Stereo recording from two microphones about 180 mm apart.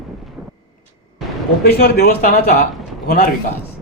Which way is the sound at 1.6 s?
55° left (ahead or behind).